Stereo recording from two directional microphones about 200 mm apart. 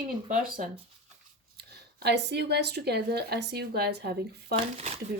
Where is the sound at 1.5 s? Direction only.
55° right (ahead or behind).